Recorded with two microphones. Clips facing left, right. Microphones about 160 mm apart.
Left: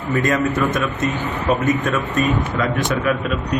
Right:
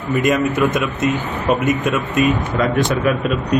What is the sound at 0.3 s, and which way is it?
A man's voice, 15° right (ahead or behind).